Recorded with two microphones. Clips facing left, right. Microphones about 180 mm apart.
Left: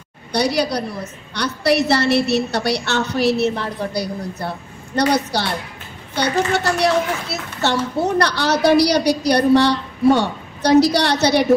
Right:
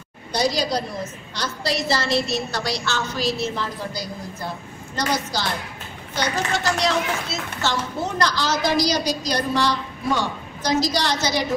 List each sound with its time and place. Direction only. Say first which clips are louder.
0.3 s a woman's voice: left 3 dB; 65° left (ahead or behind)